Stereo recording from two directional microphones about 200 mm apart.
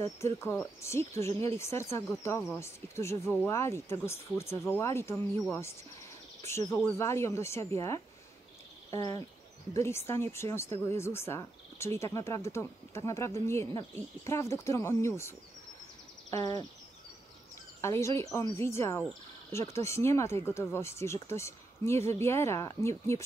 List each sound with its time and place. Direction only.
0.0 s speech: 15° left (ahead or behind)
16.3 s a sound: 15° left (ahead or behind)
17.7 s speech: 15° left (ahead or behind)